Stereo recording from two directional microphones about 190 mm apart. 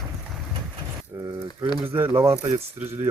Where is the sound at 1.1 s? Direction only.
15° right (ahead or behind).